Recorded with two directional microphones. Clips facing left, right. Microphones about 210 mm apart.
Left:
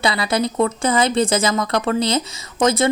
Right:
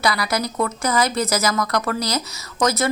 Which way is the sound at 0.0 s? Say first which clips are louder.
Left 3 dB; 25° left (ahead or behind).